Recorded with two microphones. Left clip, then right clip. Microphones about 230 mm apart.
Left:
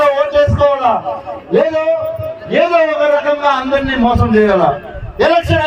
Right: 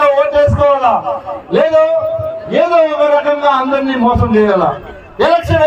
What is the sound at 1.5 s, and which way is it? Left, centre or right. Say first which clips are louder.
Speech: right 3 dB; right.